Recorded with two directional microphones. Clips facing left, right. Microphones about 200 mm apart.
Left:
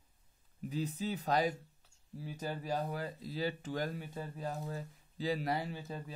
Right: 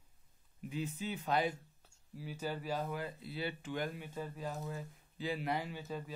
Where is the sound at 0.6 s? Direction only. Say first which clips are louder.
Left 3 dB; 35° left (ahead or behind).